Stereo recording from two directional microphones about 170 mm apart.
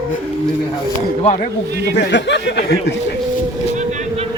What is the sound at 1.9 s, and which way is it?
Speech, 90° left.